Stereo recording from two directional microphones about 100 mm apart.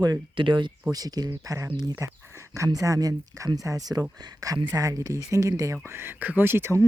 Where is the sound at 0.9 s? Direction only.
40° right (ahead or behind).